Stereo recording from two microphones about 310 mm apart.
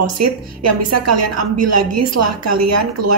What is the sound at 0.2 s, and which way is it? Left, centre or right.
A woman's voice, right.